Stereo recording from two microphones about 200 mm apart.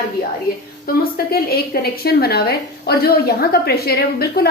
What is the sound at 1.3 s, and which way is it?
A woman's voice, 50° left (ahead or behind).